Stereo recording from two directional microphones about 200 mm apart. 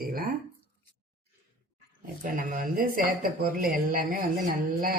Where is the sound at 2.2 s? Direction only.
45° right (ahead or behind).